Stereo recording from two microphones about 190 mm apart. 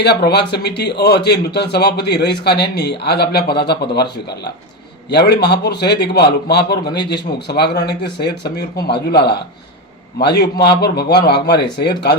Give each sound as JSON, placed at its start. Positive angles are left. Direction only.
{"t": 0.0, "sound": "a man's voice", "side_deg": 60}